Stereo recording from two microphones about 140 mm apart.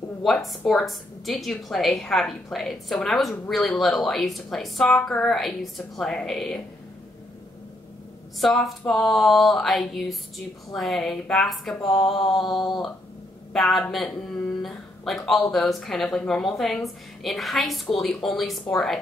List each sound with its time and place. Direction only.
0.2 s a woman's voice: centre (ahead or behind)
8.4 s a woman's voice: centre (ahead or behind)